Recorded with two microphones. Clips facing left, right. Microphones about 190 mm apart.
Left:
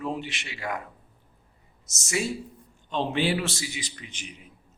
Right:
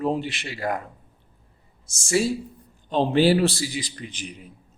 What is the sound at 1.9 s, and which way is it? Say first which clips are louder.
A man's voice: right 7 dB; 30° right (ahead or behind).